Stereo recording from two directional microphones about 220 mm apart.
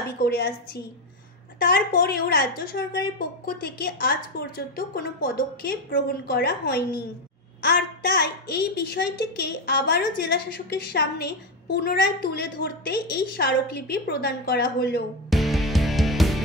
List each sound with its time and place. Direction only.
0.2 s a child's voice: 45° left (ahead or behind)
15.2 s music: centre (ahead or behind)